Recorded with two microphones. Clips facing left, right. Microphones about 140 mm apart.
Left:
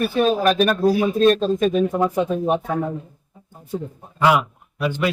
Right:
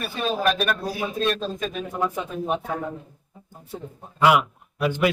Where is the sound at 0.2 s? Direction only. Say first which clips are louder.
Left 6 dB; 40° left (ahead or behind).